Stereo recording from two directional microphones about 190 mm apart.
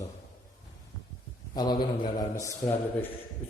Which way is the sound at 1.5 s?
20° left (ahead or behind).